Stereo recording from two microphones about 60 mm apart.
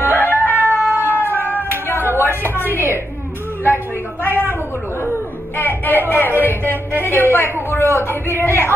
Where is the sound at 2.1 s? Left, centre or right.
Left.